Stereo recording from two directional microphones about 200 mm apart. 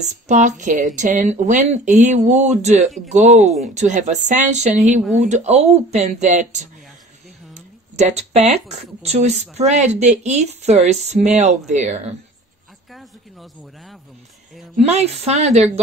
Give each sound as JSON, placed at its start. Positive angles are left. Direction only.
{"t": 0.0, "sound": "speech", "side_deg": -35}
{"t": 12.9, "sound": "speech", "side_deg": 0}
{"t": 14.8, "sound": "speech", "side_deg": -30}